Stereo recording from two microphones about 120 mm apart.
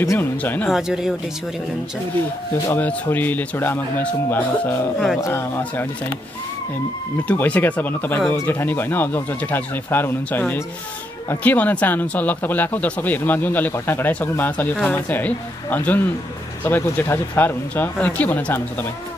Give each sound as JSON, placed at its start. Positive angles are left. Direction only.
{"t": 0.0, "sound": "speech", "side_deg": 20}
{"t": 0.7, "sound": "speech", "side_deg": -5}
{"t": 2.7, "sound": "speech", "side_deg": 15}
{"t": 4.9, "sound": "speech", "side_deg": 0}
{"t": 5.2, "sound": "speech", "side_deg": 20}
{"t": 7.2, "sound": "speech", "side_deg": 10}